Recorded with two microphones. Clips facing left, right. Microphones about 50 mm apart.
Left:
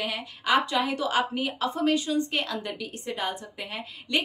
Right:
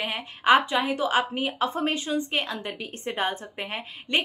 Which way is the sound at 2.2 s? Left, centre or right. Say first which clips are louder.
Even; right.